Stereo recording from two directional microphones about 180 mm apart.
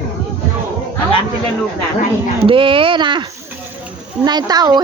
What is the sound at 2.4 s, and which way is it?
A woman's voice, 30° right (ahead or behind).